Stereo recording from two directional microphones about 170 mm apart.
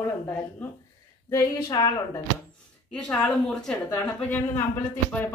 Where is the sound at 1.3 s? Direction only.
20° left (ahead or behind).